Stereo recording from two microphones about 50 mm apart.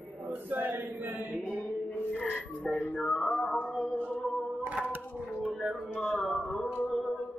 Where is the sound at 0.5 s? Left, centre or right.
Right.